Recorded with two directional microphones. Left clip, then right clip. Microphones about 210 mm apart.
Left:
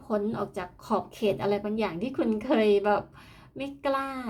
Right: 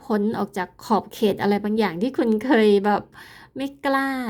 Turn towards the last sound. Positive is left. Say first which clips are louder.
# right 6 dB
turn(degrees=-40)  # may be behind; listen again after turning